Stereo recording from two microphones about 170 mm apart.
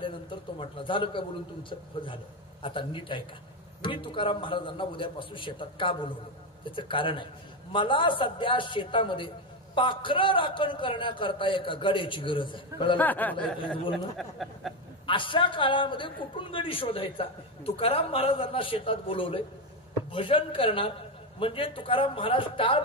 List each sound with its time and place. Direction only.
0.0 s a man's voice: 30° left (ahead or behind)
13.0 s speech: 10° left (ahead or behind)
15.0 s a man's voice: 30° left (ahead or behind)